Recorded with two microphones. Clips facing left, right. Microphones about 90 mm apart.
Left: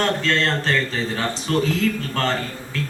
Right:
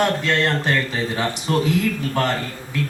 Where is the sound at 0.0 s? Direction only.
15° right (ahead or behind).